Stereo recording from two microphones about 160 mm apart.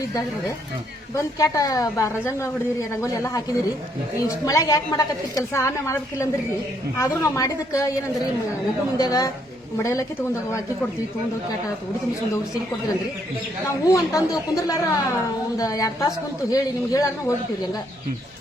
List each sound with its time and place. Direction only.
0.1 s a woman's voice: 20° left (ahead or behind)
4.4 s a woman's voice: 20° left (ahead or behind)
9.0 s a woman's voice: 20° left (ahead or behind)
13.7 s a woman's voice: 20° left (ahead or behind)